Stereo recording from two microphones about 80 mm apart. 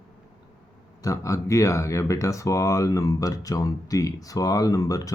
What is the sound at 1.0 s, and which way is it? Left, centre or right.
Speech, left.